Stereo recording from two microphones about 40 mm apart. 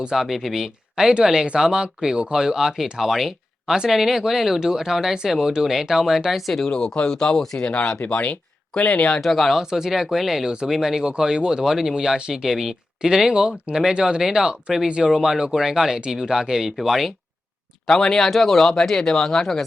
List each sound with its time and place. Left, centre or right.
0.2 s speech: centre
6.7 s speech: centre
7.6 s speech: left
9.2 s speech: centre
9.6 s speech: centre
10.4 s speech: right
12.3 s speech: centre
14.8 s speech: right
15.1 s speech: centre
17.8 s speech: centre